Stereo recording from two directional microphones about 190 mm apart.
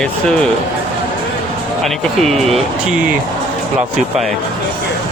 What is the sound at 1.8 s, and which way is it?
Speech, centre (ahead or behind).